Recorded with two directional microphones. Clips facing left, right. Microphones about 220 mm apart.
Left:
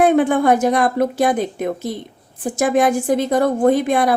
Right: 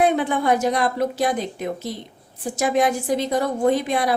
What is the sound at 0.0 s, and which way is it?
A woman's voice, 50° left (ahead or behind).